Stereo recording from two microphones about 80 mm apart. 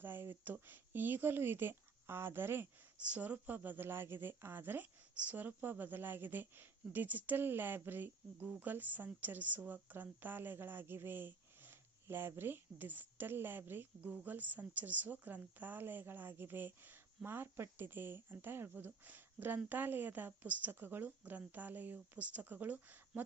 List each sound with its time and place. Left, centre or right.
0.0 s speech: right